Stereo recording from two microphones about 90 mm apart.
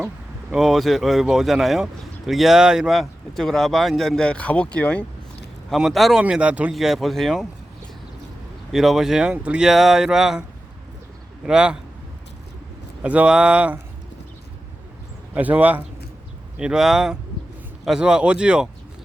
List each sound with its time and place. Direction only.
0.5 s speech: centre (ahead or behind); by 5.0 s 15° left (ahead or behind)
5.7 s speech: centre (ahead or behind)
6.2 s speech: 15° right (ahead or behind)
6.7 s speech: centre (ahead or behind)
8.7 s speech: centre (ahead or behind)
11.4 s speech: 10° right (ahead or behind)
13.0 s speech: 15° right (ahead or behind)
15.4 s speech: 20° right (ahead or behind)
16.6 s speech: 5° right (ahead or behind)